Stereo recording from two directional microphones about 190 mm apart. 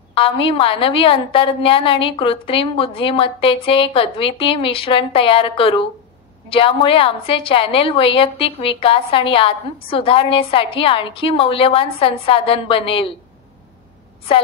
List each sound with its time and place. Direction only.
0.1 s a woman's voice: 30° left (ahead or behind)